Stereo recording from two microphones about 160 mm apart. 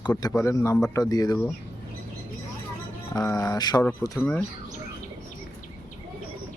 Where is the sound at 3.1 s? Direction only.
20° left (ahead or behind).